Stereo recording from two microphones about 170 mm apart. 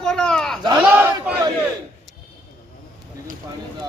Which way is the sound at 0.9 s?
10° right (ahead or behind).